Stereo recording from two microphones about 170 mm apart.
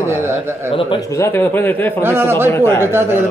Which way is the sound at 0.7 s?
30° left (ahead or behind).